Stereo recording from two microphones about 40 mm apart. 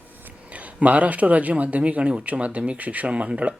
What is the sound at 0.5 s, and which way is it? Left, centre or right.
Speech, right.